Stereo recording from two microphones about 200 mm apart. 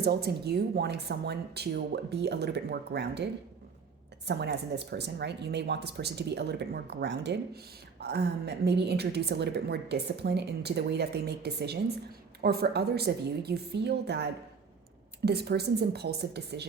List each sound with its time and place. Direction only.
0.0 s speech: 55° right (ahead or behind)
4.3 s speech: 55° right (ahead or behind)